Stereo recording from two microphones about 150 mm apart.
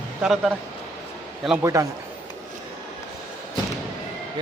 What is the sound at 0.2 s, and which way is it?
Speech, 5° right (ahead or behind).